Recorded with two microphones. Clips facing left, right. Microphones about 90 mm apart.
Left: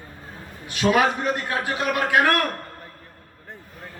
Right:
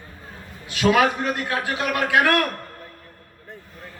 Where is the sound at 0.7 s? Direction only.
25° left (ahead or behind).